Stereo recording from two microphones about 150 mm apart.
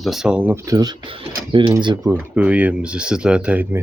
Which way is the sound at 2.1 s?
10° right (ahead or behind).